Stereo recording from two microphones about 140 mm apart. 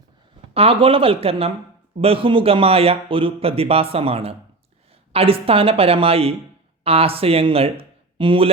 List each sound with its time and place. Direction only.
0.5 s a man's voice: 45° right (ahead or behind)